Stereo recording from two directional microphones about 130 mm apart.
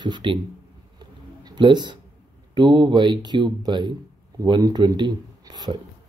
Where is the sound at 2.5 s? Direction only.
35° right (ahead or behind).